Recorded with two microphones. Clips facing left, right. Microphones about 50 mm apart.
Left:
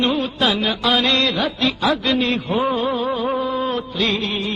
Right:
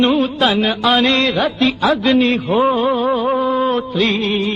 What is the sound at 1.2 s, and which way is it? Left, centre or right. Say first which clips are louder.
Music: right 4 dB; centre.